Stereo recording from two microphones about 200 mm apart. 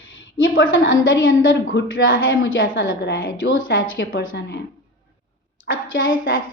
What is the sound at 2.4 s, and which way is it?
Speech, 85° left.